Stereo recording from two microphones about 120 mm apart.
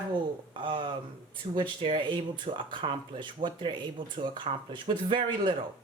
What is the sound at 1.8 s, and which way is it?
Speech, 45° right (ahead or behind).